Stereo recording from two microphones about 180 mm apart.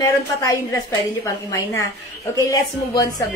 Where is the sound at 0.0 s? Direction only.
20° left (ahead or behind).